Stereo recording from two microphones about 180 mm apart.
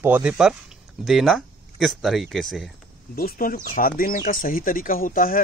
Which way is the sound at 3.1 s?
55° left (ahead or behind).